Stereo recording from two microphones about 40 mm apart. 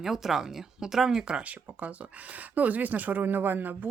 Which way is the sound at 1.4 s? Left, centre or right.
Right.